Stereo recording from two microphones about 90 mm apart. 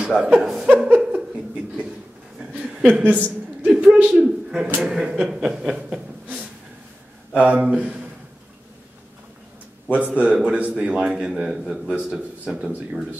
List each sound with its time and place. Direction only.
0.1 s speech: 5° right (ahead or behind)
0.7 s a sound: 15° right (ahead or behind)
2.5 s a sound: 10° right (ahead or behind)
3.6 s a man's voice: 10° right (ahead or behind)
4.7 s chuckle: 5° right (ahead or behind)
7.3 s a man's voice: 15° right (ahead or behind)
9.8 s a man's voice: 15° right (ahead or behind)